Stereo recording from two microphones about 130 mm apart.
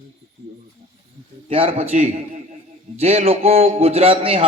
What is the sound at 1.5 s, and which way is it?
A man's voice, 45° right (ahead or behind).